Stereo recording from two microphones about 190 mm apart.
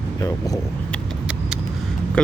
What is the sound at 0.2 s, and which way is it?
Speech, 20° left (ahead or behind).